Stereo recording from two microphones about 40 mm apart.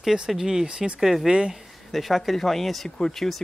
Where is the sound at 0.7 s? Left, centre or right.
Right.